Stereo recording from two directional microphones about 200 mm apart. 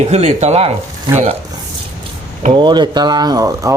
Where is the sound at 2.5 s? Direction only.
25° right (ahead or behind).